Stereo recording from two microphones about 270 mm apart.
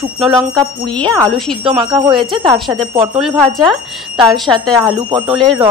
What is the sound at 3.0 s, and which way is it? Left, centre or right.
A woman's voice, centre.